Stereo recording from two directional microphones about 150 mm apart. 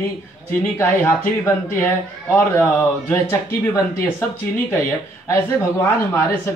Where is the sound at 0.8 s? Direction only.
15° left (ahead or behind).